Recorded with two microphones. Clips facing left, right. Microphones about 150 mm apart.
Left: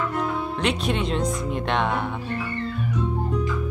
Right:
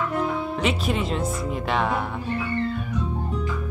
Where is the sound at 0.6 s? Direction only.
Centre (ahead or behind).